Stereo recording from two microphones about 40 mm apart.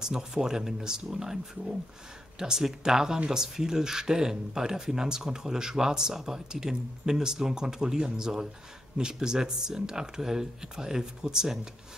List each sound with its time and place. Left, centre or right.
0.0 s speech: centre